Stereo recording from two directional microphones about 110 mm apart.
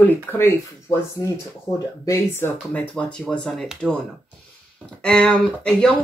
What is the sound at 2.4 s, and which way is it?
Speech, 20° left (ahead or behind).